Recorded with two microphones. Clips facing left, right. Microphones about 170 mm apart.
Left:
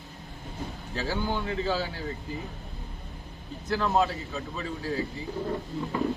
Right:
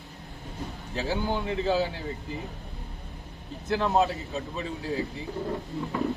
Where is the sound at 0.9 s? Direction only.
20° right (ahead or behind).